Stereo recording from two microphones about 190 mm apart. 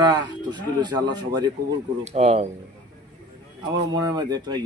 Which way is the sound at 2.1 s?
35° right (ahead or behind).